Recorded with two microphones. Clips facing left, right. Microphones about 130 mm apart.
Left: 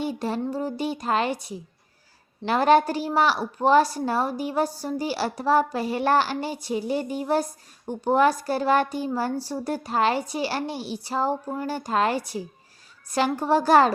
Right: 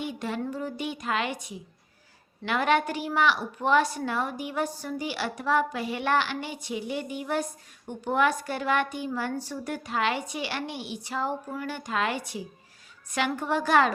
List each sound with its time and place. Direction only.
0.0 s music: 35° left (ahead or behind)
0.4 s a woman's voice: 35° left (ahead or behind)